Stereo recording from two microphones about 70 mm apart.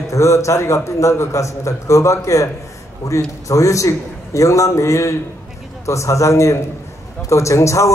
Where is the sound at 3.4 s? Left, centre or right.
Left.